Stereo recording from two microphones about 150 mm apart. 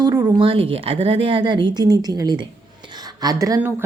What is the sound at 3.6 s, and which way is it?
Speech, 15° right (ahead or behind).